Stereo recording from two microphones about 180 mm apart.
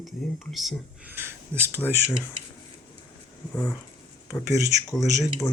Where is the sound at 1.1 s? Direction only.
15° right (ahead or behind).